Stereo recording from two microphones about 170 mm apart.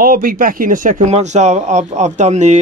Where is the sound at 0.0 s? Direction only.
55° right (ahead or behind).